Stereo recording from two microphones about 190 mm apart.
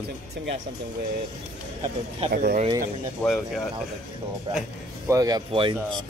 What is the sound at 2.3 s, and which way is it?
Speech, 50° right (ahead or behind).